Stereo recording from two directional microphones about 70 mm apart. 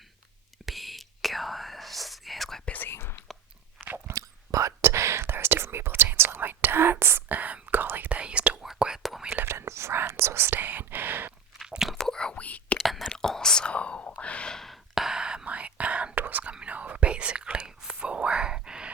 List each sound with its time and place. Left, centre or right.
0.6 s whispering: centre
2.6 s whispering: left
2.9 s whispering: left
3.8 s biting: right
4.1 s whispering: right; by 9.0 s centre
9.3 s whispering: right
11.6 s biting: centre
11.9 s whispering: centre
12.8 s whispering: centre